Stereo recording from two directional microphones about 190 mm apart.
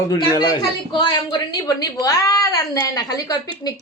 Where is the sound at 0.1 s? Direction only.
20° left (ahead or behind).